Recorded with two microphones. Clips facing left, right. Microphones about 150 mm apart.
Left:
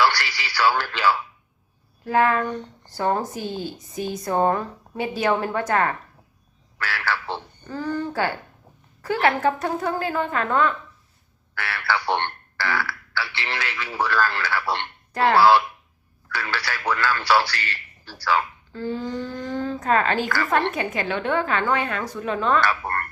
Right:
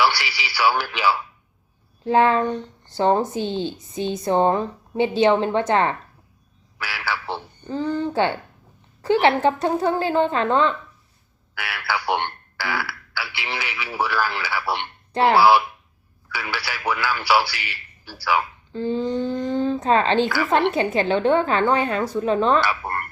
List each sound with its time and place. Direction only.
0.0 s speech: 10° right (ahead or behind)
2.0 s speech: 25° right (ahead or behind)
6.7 s a man's voice: 10° right (ahead or behind)
7.7 s speech: 20° right (ahead or behind)
11.5 s a man's voice: 10° right (ahead or behind)
18.7 s speech: 20° right (ahead or behind)
22.6 s a man's voice: 10° right (ahead or behind)